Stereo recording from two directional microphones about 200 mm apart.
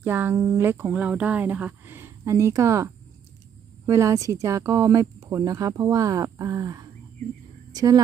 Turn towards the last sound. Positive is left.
turn(degrees=-20)  # may be behind; listen again after turning